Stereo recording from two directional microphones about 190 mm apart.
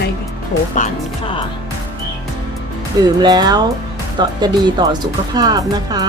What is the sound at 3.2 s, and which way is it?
Speech, 20° right (ahead or behind).